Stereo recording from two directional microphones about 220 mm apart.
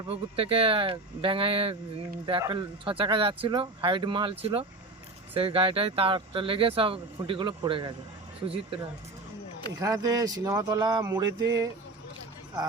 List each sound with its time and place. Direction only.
0.1 s speech: 25° right (ahead or behind)
9.8 s speech: 15° right (ahead or behind)